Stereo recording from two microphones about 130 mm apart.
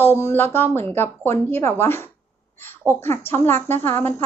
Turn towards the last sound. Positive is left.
turn(degrees=15)  # may be behind; listen again after turning